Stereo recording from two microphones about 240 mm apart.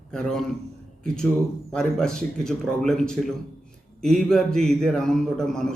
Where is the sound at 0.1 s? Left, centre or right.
Centre.